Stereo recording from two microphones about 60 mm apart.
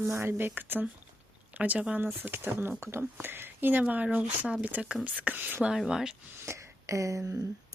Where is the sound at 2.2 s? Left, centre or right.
Right.